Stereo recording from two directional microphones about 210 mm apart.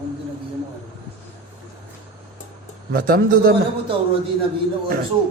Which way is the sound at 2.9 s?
45° right (ahead or behind).